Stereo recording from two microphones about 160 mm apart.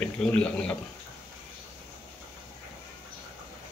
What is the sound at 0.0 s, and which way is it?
Speech, 10° left (ahead or behind).